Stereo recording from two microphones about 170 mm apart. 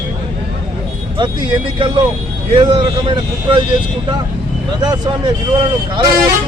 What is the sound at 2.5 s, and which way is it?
Speech, 30° right (ahead or behind).